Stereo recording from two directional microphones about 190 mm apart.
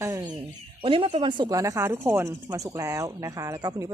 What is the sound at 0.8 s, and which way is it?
Speech, 30° right (ahead or behind).